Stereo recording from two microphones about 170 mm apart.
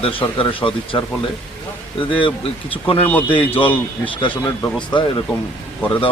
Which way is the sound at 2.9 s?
10° left (ahead or behind).